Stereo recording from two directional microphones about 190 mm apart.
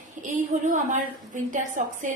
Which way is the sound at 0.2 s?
40° right (ahead or behind).